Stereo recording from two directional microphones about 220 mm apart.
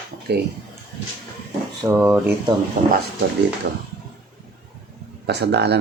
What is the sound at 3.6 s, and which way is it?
Speech, 45° right (ahead or behind).